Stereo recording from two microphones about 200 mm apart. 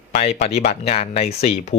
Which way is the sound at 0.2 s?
35° left (ahead or behind).